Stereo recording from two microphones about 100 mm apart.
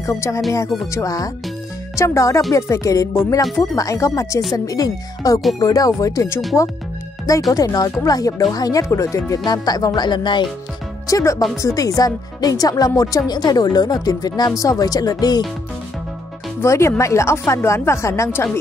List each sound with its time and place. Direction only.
0.0 s speech: 30° left (ahead or behind)
7.5 s speech: 40° left (ahead or behind)
9.4 s speech: 40° left (ahead or behind)
11.1 s speech: 35° left (ahead or behind)
16.6 s speech: 30° left (ahead or behind)